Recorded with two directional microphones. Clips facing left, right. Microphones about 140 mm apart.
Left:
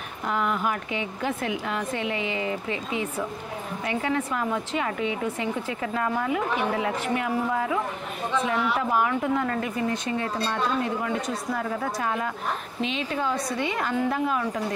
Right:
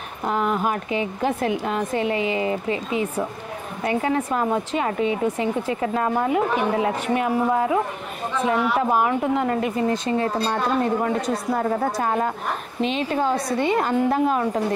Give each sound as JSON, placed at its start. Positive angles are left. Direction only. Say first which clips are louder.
{"t": 0.3, "sound": "a woman's voice", "louder": "right 4 dB", "side_deg": -35}
{"t": 8.9, "sound": "a woman's voice", "louder": "right 3 dB", "side_deg": -25}